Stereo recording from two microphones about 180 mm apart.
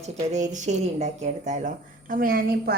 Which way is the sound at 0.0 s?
40° right (ahead or behind).